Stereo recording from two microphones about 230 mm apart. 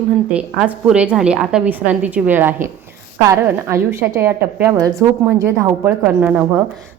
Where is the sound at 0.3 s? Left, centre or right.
Centre.